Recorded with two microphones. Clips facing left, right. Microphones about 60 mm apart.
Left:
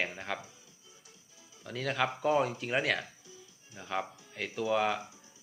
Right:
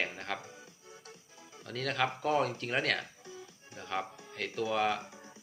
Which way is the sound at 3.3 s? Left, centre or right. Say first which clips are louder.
Right 5 dB; right.